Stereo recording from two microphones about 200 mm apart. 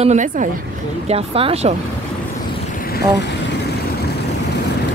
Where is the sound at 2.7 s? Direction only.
45° left (ahead or behind).